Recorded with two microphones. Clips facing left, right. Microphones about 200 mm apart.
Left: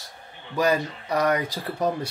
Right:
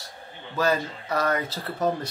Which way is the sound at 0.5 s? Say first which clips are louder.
Left 2 dB; 15° left (ahead or behind).